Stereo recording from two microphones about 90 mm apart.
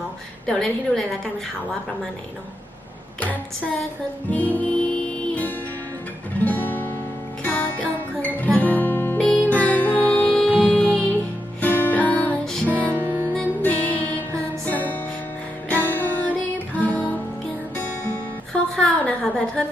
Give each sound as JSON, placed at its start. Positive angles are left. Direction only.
{"t": 0.4, "sound": "a woman's voice", "side_deg": 5}
{"t": 4.3, "sound": "music", "side_deg": 20}
{"t": 6.4, "sound": "guitar", "side_deg": 20}
{"t": 7.4, "sound": "music", "side_deg": 20}
{"t": 8.5, "sound": "guitar", "side_deg": 20}
{"t": 9.1, "sound": "music", "side_deg": 15}
{"t": 12.9, "sound": "music", "side_deg": -25}
{"t": 13.6, "sound": "music", "side_deg": 20}
{"t": 18.5, "sound": "a sound", "side_deg": 10}